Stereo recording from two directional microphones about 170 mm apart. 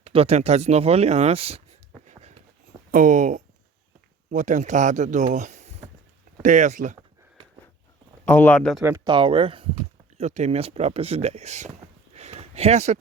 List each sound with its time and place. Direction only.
0.0 s speech: 35° right (ahead or behind)
2.0 s a sound: 40° right (ahead or behind)
2.9 s speech: 50° right (ahead or behind)
8.2 s speech: 10° left (ahead or behind)
9.0 s speech: 30° right (ahead or behind)
12.1 s a sound: 40° right (ahead or behind)